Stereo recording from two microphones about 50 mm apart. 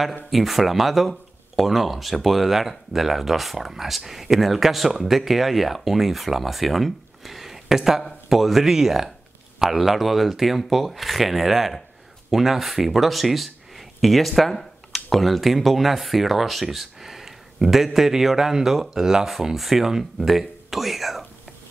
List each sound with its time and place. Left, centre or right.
0.3 s speech: centre